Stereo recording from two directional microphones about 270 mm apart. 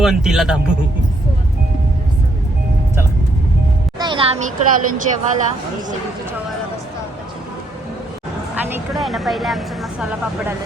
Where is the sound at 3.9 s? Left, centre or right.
Centre.